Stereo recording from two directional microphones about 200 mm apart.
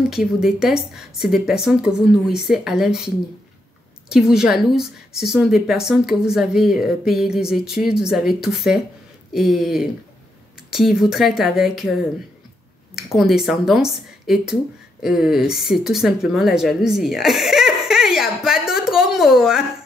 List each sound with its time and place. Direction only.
0.1 s a woman's voice: centre (ahead or behind)
4.1 s a woman's voice: 5° right (ahead or behind)